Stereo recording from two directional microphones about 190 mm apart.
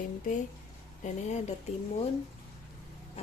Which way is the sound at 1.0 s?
35° left (ahead or behind).